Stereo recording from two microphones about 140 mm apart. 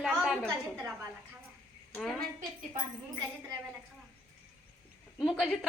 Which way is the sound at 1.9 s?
5° left (ahead or behind).